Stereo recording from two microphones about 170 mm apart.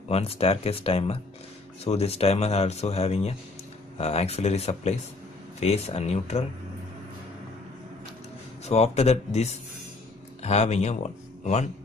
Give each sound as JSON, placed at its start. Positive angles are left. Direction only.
{"t": 0.1, "sound": "speech", "side_deg": 35}
{"t": 8.6, "sound": "speech", "side_deg": 40}